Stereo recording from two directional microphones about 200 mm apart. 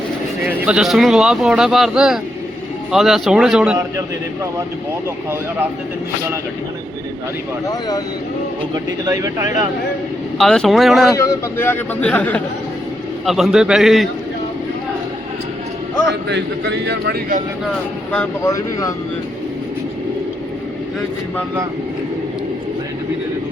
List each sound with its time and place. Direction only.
0.4 s speech: 5° right (ahead or behind)
7.7 s speech: 20° left (ahead or behind)
8.7 s speech: 15° right (ahead or behind)
10.3 s speech: centre (ahead or behind)
11.1 s speech: 15° left (ahead or behind)
16.3 s a man's voice: 60° right (ahead or behind)
18.1 s speech: 10° left (ahead or behind)